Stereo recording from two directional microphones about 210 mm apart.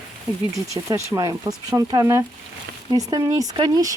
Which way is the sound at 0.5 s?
15° right (ahead or behind).